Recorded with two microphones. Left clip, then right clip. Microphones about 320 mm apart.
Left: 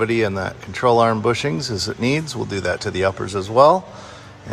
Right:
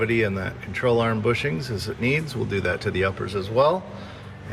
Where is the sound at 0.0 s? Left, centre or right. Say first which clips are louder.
Left 4 dB; centre.